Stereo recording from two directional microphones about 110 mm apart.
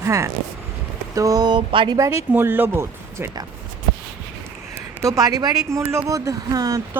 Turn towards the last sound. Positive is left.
turn(degrees=-30)  # may be behind; listen again after turning